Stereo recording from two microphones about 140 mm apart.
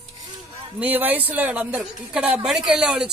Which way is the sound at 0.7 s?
10° right (ahead or behind).